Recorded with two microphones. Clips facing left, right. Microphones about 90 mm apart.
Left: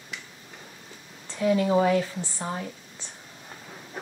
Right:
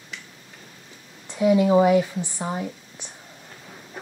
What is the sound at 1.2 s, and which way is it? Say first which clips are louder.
Speech: right 5 dB; 15° right (ahead or behind).